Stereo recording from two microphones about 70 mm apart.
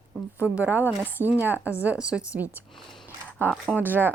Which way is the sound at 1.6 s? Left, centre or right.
Left.